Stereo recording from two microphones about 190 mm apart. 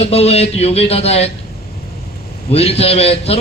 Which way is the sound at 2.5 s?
30° left (ahead or behind).